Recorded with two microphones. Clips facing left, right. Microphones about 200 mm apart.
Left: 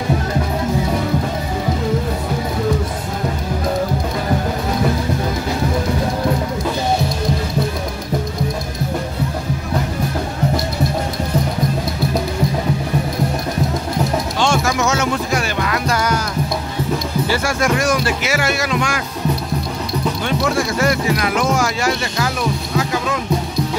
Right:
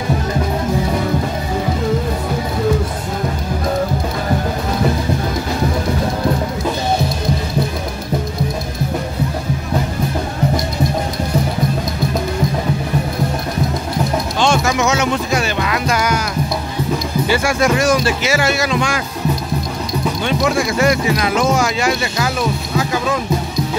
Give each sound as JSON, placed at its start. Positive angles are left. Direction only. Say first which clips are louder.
{"t": 14.4, "sound": "music", "louder": "right 2 dB", "side_deg": -20}
{"t": 17.3, "sound": "speech", "louder": "right 3 dB", "side_deg": -15}
{"t": 20.2, "sound": "speech", "louder": "right 3 dB", "side_deg": -15}